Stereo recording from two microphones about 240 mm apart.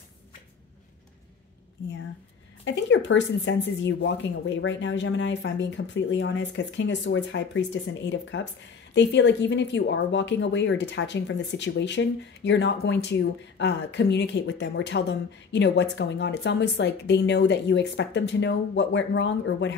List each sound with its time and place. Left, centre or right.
2.6 s speech: left